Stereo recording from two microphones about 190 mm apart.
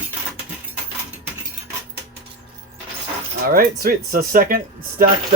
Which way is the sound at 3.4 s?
50° right (ahead or behind).